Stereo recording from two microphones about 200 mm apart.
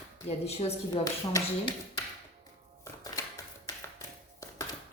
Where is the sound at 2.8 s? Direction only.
15° left (ahead or behind).